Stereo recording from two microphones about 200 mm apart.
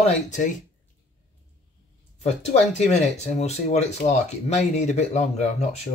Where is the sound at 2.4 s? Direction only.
35° left (ahead or behind).